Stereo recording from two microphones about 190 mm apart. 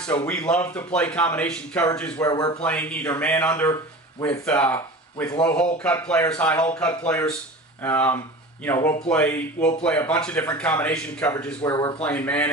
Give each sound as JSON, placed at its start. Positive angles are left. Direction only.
{"t": 0.1, "sound": "speech", "side_deg": 10}
{"t": 2.2, "sound": "a man's voice", "side_deg": 20}
{"t": 2.6, "sound": "speech", "side_deg": 5}
{"t": 12.0, "sound": "speech", "side_deg": 10}